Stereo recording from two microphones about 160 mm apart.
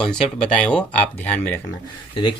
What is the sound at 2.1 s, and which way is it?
Speech, 30° left (ahead or behind).